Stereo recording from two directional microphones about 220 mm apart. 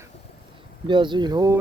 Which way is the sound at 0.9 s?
20° right (ahead or behind).